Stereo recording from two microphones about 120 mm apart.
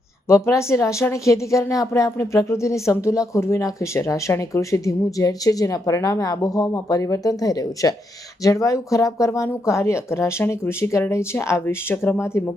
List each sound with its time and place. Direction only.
0.3 s a woman's voice: 25° left (ahead or behind)